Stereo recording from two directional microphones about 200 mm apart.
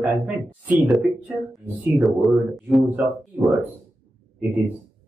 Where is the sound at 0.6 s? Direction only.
Centre (ahead or behind).